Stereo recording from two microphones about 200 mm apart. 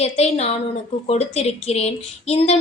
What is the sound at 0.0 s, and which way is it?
A woman's voice, 30° left (ahead or behind).